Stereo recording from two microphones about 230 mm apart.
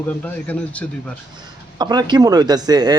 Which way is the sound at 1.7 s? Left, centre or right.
Centre.